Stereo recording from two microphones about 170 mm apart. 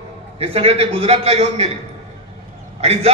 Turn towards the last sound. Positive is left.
turn(degrees=-35)  # may be behind; listen again after turning